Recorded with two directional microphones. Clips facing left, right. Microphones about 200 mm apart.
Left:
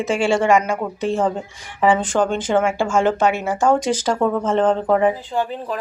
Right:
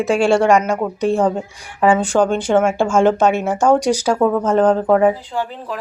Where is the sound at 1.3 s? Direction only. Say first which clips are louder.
Right 4 dB; 10° right (ahead or behind).